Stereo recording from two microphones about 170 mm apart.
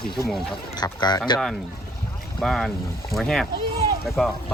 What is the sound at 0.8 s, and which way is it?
Speech, 25° left (ahead or behind).